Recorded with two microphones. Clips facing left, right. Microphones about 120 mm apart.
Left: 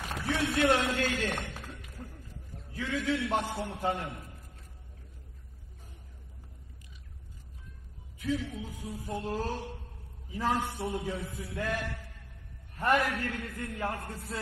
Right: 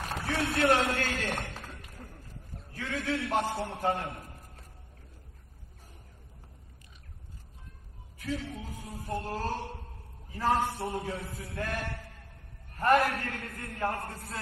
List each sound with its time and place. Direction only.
0.0 s a sound: 40° right (ahead or behind)
0.7 s a man's voice: 45° right (ahead or behind)
8.2 s a man's voice: 40° right (ahead or behind)